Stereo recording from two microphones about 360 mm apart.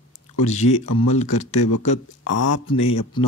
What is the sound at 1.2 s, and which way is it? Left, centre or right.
Speech, left.